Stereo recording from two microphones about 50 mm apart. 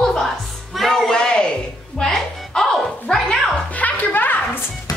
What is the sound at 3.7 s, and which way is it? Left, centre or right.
Music, left.